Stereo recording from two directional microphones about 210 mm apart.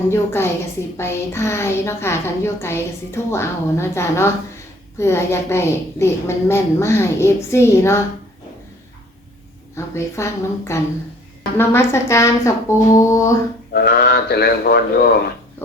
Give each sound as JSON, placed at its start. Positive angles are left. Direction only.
{"t": 0.1, "sound": "a woman's voice", "side_deg": 10}
{"t": 9.7, "sound": "a woman's voice", "side_deg": 15}
{"t": 13.7, "sound": "speech", "side_deg": 50}